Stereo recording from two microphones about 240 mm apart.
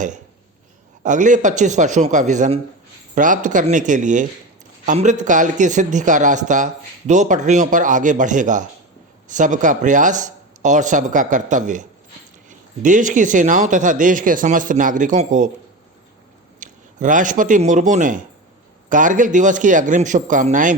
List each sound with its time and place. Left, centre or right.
1.0 s speech: right
16.6 s speech: right